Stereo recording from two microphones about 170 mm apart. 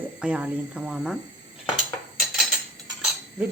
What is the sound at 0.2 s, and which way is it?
Speech, 5° right (ahead or behind).